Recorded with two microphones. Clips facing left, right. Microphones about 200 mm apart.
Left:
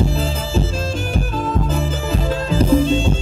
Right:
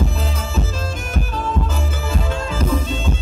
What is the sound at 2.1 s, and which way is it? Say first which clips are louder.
Music: left 4 dB; 30° left (ahead or behind).